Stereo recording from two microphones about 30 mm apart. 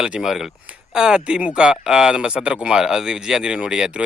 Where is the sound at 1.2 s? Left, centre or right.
Right.